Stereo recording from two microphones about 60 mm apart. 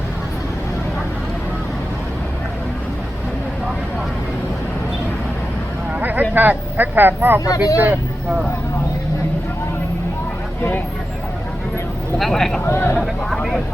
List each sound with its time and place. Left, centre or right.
6.0 s speech: right
7.4 s speech: left
12.1 s speech: centre
12.6 s speech: left
13.0 s speech: centre